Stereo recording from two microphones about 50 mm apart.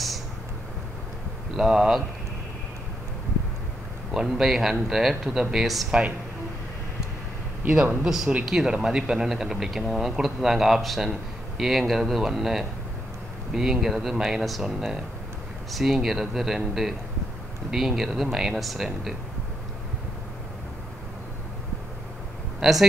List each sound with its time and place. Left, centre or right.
1.6 s a man's voice: centre
4.3 s speech: centre
5.9 s speech: right
8.0 s a man's voice: centre
22.6 s speech: centre